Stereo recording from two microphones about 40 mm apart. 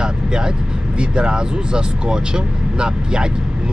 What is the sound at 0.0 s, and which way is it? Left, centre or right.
Vehicle, centre.